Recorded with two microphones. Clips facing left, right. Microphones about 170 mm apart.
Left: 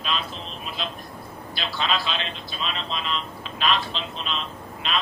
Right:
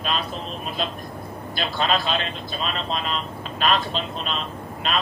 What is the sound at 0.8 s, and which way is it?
A man's voice, 45° right (ahead or behind).